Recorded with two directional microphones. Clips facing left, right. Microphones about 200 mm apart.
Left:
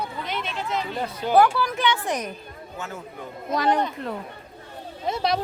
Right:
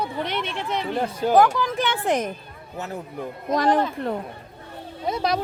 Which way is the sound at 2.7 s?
35° right (ahead or behind).